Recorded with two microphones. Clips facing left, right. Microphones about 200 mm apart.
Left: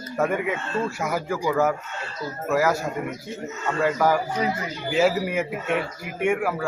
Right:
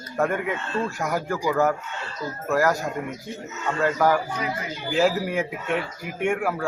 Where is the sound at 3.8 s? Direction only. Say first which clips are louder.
Even; 10° left (ahead or behind).